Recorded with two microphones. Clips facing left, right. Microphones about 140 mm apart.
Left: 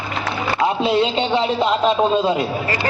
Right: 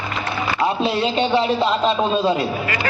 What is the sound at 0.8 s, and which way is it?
A man's voice, 20° left (ahead or behind).